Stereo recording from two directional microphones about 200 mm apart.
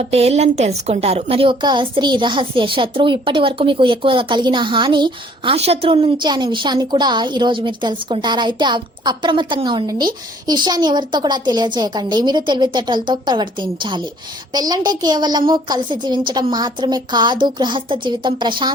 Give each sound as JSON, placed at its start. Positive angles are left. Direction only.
{"t": 0.1, "sound": "a woman's voice", "side_deg": -30}